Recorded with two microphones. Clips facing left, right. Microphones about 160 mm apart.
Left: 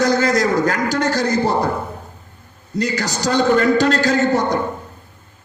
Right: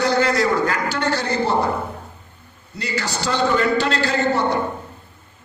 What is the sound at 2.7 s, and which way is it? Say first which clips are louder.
A man's voice: left 5 dB; 40° left (ahead or behind).